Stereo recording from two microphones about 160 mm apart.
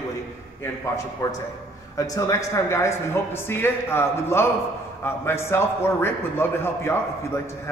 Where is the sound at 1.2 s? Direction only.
20° left (ahead or behind).